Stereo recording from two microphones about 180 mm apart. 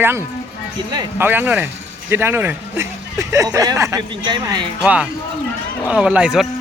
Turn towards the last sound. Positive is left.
turn(degrees=-5)  # may be behind; listen again after turning